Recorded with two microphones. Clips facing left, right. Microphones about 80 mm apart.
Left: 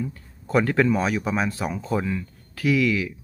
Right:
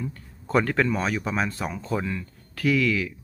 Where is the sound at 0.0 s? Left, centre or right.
Centre.